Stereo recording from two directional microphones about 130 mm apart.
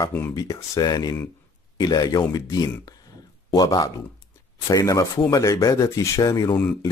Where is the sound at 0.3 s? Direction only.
25° left (ahead or behind).